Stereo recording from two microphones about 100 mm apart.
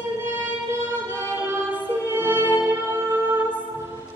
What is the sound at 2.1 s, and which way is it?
Music, 20° right (ahead or behind).